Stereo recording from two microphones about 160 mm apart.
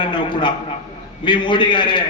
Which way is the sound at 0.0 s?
30° left (ahead or behind).